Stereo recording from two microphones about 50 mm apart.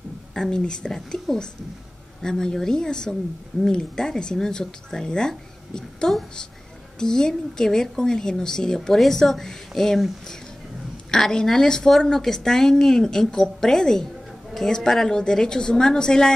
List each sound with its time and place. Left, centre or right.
0.3 s speech: centre
2.2 s speech: centre